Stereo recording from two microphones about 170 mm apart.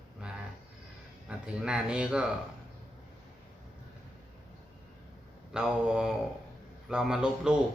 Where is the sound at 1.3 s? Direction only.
5° right (ahead or behind).